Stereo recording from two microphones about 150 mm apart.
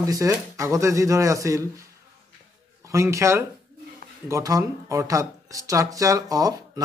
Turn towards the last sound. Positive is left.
turn(degrees=-25)  # may be behind; listen again after turning